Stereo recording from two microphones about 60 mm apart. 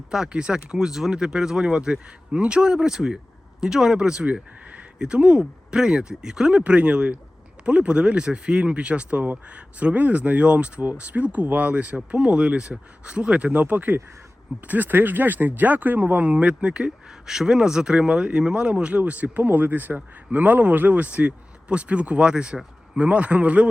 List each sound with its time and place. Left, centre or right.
0.1 s speech: centre
11.9 s speech: centre